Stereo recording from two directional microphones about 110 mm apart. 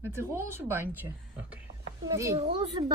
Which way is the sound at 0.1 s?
20° right (ahead or behind).